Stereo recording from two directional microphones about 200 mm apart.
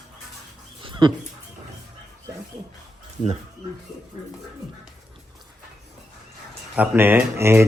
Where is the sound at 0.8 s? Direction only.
25° right (ahead or behind).